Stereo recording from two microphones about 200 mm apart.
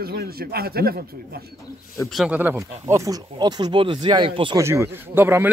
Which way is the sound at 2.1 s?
5° right (ahead or behind).